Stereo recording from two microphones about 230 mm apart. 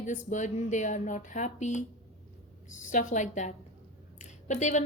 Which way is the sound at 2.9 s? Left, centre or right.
Left.